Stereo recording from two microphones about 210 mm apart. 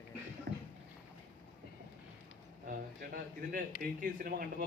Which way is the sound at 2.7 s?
45° right (ahead or behind).